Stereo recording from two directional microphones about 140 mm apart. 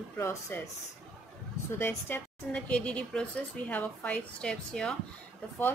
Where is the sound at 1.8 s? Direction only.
15° left (ahead or behind).